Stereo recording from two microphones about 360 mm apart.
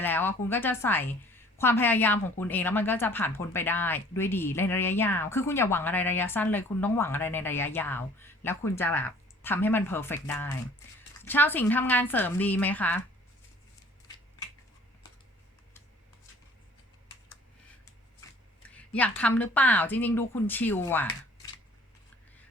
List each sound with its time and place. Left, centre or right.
0.0 s speech: centre
18.9 s speech: centre